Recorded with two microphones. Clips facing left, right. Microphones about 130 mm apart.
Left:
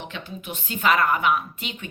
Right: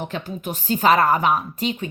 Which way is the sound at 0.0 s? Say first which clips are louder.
Right 7 dB; 45° right (ahead or behind).